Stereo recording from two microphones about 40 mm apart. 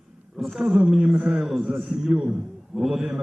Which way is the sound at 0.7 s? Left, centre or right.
Centre.